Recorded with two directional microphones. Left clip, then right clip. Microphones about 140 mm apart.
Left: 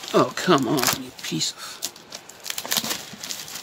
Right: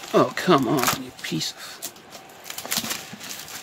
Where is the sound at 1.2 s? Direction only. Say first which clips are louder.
Left 1 dB; centre (ahead or behind).